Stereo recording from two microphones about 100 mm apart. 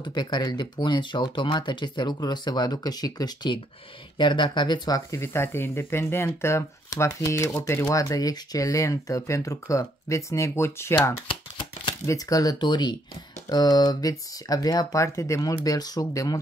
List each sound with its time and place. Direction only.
0.0 s speech: 45° left (ahead or behind)
4.2 s speech: 50° left (ahead or behind)
5.1 s speech: 25° left (ahead or behind)
11.2 s shuffling cards: 55° left (ahead or behind)
12.1 s speech: 35° left (ahead or behind)